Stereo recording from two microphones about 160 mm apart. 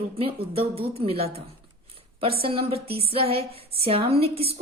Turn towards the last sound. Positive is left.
turn(degrees=-40)  # may be behind; listen again after turning